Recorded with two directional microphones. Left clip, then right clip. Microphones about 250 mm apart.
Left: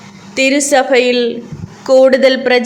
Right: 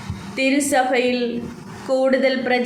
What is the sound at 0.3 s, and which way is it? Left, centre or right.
Speech, left.